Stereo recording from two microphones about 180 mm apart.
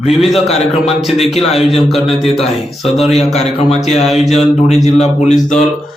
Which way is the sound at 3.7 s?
35° left (ahead or behind).